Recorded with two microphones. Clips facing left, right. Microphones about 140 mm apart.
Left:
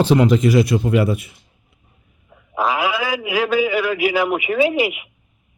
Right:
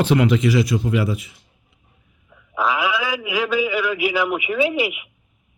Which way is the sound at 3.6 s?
45° left (ahead or behind).